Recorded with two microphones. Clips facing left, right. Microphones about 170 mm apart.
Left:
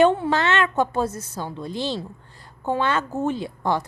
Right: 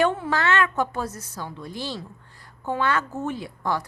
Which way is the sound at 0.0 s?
25° left (ahead or behind).